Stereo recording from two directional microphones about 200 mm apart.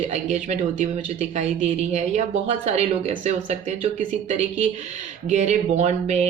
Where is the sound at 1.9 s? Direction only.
35° right (ahead or behind).